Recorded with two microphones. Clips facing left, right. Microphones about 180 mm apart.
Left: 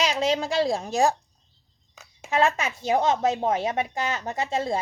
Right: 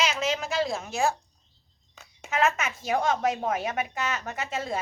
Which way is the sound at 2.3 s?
30° left (ahead or behind).